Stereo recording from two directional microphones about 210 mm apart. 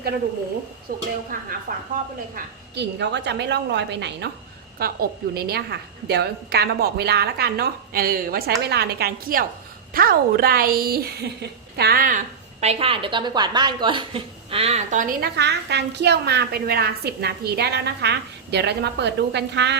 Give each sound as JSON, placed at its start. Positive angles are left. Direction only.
{"t": 1.3, "sound": "a woman's voice", "side_deg": -45}
{"t": 2.3, "sound": "a woman's voice", "side_deg": -55}
{"t": 15.4, "sound": "a woman's voice", "side_deg": -55}